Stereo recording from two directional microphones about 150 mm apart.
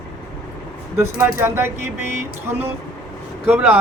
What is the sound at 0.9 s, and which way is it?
Speech, 20° right (ahead or behind).